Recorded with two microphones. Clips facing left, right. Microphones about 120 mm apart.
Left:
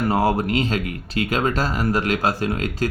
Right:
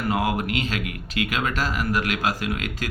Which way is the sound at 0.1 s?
35° left (ahead or behind).